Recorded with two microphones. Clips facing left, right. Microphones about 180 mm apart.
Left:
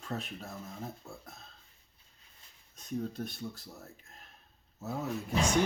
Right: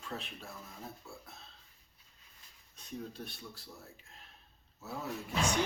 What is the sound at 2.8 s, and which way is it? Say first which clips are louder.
Speech: left 7 dB; 45° left (ahead or behind).